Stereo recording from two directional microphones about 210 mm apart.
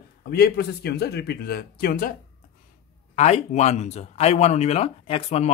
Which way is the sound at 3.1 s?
30° left (ahead or behind).